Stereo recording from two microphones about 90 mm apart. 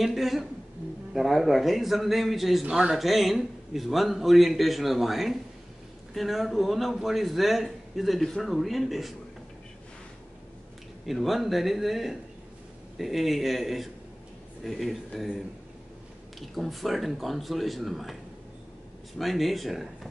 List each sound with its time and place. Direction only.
0.0 s a woman's voice: centre (ahead or behind)
11.1 s a man's voice: centre (ahead or behind)